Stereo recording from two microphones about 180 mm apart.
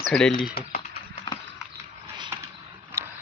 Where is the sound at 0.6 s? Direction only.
60° left (ahead or behind).